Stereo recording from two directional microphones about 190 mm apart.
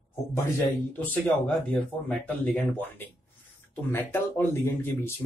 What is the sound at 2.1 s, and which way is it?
Speech, 5° left (ahead or behind).